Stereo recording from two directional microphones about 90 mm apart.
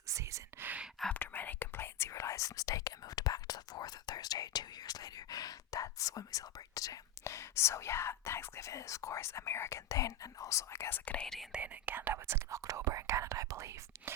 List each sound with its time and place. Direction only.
0.1 s whispering: 35° right (ahead or behind)
0.6 s whispering: 15° right (ahead or behind)
1.1 s whispering: 20° left (ahead or behind)
11.5 s whispering: 20° right (ahead or behind); by 14.1 s 35° right (ahead or behind)